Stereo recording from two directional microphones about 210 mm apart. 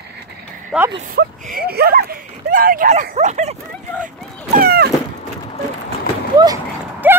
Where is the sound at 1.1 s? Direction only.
45° right (ahead or behind).